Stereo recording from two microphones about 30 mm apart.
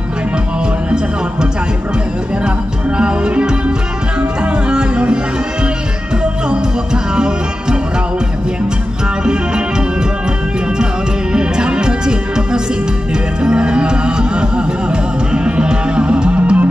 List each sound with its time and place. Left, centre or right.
3.0 s music: right
11.3 s music: right